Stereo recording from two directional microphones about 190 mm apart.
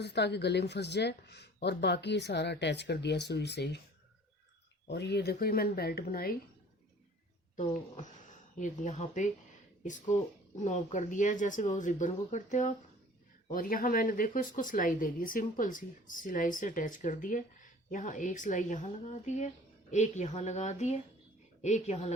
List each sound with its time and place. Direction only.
0.0 s speech: 60° left (ahead or behind)
4.9 s speech: 60° left (ahead or behind)
7.9 s speech: 40° left (ahead or behind)